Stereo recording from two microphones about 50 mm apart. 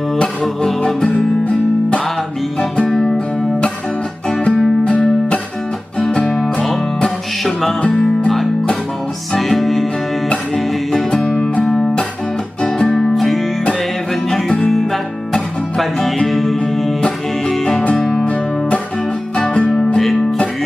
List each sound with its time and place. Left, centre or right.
1.1 s guitar: left
4.3 s music: centre
9.3 s music: centre
10.9 s music: centre
11.6 s music: centre
14.7 s music: centre
16.3 s music: centre
19.3 s music: centre